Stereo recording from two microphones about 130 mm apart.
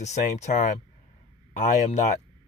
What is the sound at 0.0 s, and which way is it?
Speech, 60° left (ahead or behind).